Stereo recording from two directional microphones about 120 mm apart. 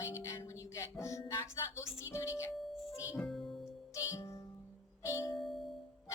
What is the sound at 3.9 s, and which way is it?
Music, 25° left (ahead or behind).